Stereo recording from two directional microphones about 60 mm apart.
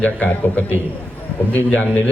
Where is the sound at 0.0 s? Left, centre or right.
Left.